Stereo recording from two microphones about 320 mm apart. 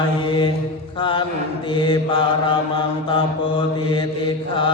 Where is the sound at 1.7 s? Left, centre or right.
Centre.